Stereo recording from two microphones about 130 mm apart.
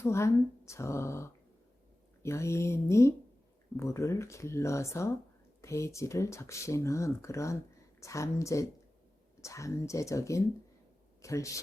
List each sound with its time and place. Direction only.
0.0 s speech: 20° left (ahead or behind)